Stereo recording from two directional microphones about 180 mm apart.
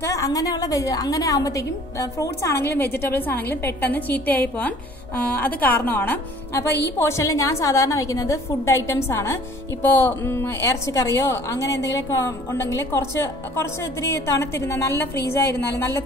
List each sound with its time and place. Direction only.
0.0 s a woman's voice: 20° left (ahead or behind)